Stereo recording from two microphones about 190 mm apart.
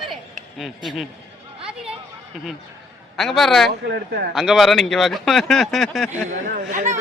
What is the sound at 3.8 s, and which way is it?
Speech, 60° right (ahead or behind).